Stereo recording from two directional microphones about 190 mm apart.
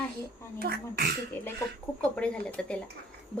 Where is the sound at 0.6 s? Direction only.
55° right (ahead or behind).